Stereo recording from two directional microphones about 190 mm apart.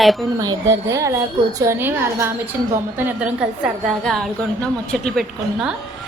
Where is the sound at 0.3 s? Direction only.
20° right (ahead or behind).